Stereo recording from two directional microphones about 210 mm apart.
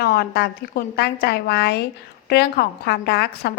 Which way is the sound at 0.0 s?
50° left (ahead or behind).